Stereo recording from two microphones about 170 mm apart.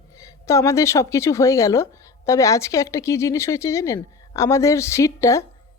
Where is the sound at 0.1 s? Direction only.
20° left (ahead or behind).